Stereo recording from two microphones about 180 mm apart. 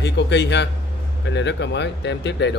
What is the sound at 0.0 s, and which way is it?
Speech, 75° left (ahead or behind).